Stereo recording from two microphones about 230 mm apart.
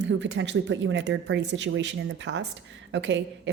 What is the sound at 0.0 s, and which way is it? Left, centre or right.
Speech, right.